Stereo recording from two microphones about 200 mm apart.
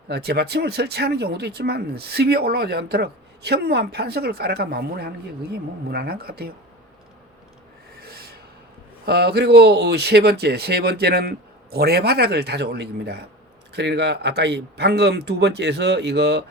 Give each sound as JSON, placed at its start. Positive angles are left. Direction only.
{"t": 0.1, "sound": "speech", "side_deg": -55}
{"t": 8.0, "sound": "rub", "side_deg": -50}
{"t": 9.0, "sound": "speech", "side_deg": -55}